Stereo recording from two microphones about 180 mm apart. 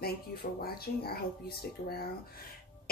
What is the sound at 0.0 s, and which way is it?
Speech, 60° left (ahead or behind).